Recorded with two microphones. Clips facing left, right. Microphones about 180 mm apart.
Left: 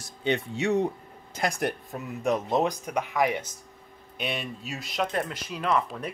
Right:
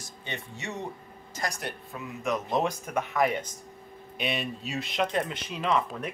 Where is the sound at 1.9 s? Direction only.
45° left (ahead or behind).